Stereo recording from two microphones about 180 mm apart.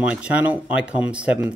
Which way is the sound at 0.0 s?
5° right (ahead or behind).